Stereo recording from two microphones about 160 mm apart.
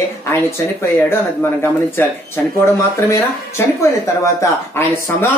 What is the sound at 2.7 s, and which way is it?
Speech, 20° left (ahead or behind).